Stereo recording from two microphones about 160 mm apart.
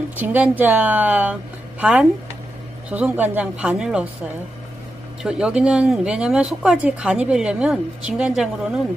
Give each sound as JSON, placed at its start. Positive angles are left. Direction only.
{"t": 0.2, "sound": "speech", "side_deg": -10}
{"t": 5.2, "sound": "speech", "side_deg": -5}